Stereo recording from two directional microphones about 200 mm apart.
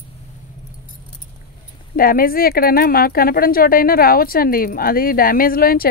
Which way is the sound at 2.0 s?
45° left (ahead or behind).